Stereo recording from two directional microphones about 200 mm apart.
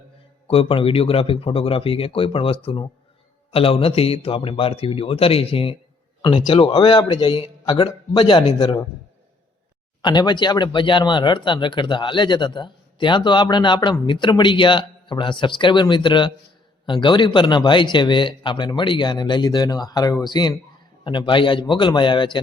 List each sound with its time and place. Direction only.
0.4 s speech: 25° left (ahead or behind)
10.0 s speech: 20° left (ahead or behind)